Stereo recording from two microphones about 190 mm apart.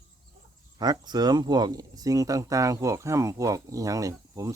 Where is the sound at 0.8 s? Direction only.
20° right (ahead or behind).